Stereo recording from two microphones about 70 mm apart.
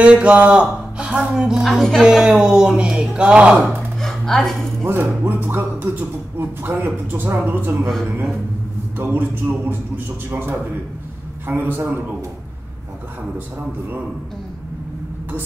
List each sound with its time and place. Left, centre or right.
0.0 s speech: centre
4.0 s a sound: centre
4.8 s a man's voice: right
8.9 s a man's voice: right